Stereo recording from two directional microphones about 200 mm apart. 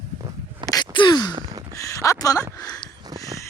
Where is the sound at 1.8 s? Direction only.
15° left (ahead or behind).